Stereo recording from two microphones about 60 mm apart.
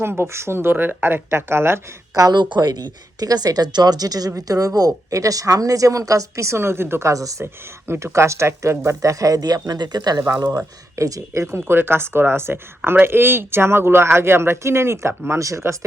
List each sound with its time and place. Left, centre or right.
0.0 s speech: right
2.5 s speech: right
7.1 s speech: right
7.4 s speech: right
8.9 s speech: right
10.9 s speech: right
11.5 s speech: right